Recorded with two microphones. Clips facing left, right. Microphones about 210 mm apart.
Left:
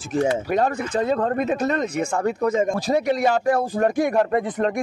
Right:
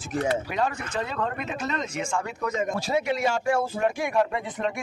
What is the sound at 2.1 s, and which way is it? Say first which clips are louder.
A man's voice: left 9 dB; 40° left (ahead or behind).